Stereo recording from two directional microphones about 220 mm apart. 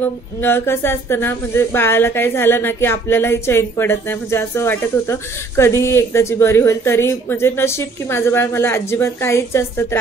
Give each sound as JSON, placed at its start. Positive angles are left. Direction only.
{"t": 0.0, "sound": "a woman's voice", "side_deg": 10}